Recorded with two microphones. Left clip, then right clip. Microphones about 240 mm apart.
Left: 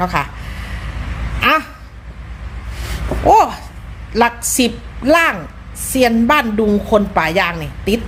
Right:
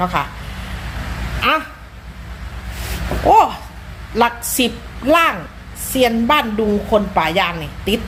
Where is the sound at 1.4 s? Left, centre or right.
Centre.